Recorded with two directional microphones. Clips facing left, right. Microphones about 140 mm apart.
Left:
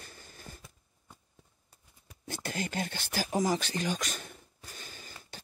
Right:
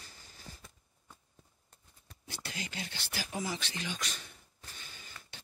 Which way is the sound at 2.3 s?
50° left (ahead or behind).